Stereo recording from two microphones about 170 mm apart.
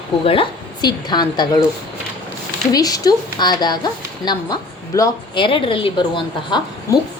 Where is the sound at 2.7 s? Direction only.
20° left (ahead or behind).